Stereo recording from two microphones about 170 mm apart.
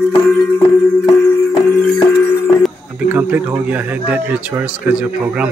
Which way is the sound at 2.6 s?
10° right (ahead or behind).